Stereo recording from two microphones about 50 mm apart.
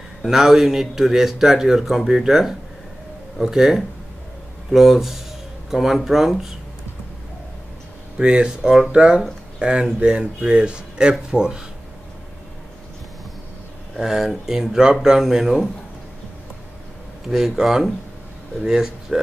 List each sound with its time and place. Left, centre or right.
0.2 s speech: centre
8.2 s speech: centre
13.9 s speech: centre
17.3 s speech: centre